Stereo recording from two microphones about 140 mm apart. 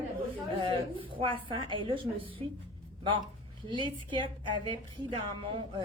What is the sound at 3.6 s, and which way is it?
Speech, 35° right (ahead or behind).